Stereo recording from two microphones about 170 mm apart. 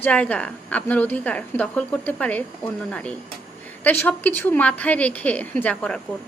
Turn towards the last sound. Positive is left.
turn(degrees=5)  # may be behind; listen again after turning